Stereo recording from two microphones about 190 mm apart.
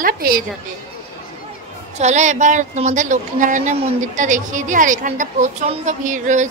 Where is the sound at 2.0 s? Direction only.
40° right (ahead or behind).